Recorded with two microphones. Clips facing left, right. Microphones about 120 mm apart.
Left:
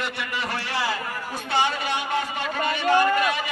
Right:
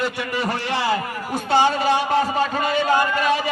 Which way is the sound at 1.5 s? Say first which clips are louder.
Right 7 dB; 35° right (ahead or behind).